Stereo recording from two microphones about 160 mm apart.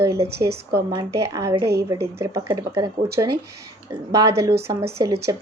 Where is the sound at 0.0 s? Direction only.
20° right (ahead or behind).